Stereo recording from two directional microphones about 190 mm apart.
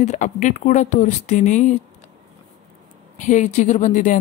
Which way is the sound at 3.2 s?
40° left (ahead or behind).